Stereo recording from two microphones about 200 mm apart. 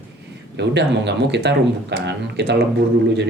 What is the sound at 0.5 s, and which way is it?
A man's voice, 60° right (ahead or behind).